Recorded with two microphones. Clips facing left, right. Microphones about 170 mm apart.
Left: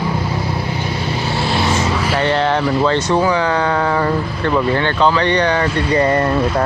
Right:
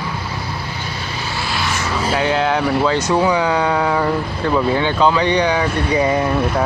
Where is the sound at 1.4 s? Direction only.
25° left (ahead or behind).